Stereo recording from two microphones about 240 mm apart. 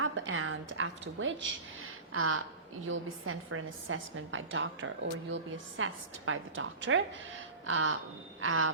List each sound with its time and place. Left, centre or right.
0.0 s a woman's voice: right